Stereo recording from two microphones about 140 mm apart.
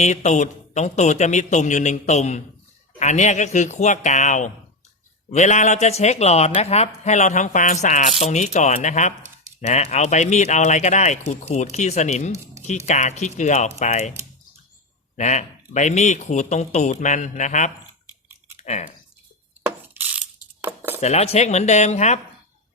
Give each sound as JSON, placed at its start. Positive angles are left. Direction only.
{"t": 0.0, "sound": "speech", "side_deg": 55}
{"t": 15.1, "sound": "speech", "side_deg": 55}
{"t": 18.5, "sound": "chewing", "side_deg": 55}
{"t": 19.6, "sound": "cutlery", "side_deg": -15}
{"t": 21.0, "sound": "speech", "side_deg": 50}